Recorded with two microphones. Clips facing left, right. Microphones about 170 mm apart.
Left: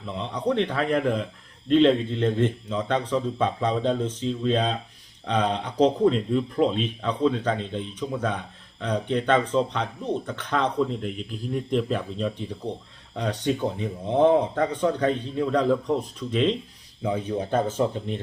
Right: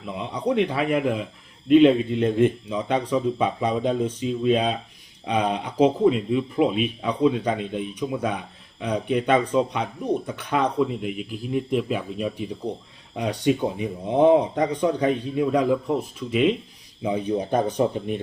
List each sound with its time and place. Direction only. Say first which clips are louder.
0.0 s a man's voice: right 1 dB; 10° right (ahead or behind)